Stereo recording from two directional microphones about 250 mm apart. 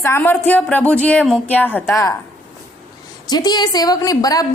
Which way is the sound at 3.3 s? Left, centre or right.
Centre.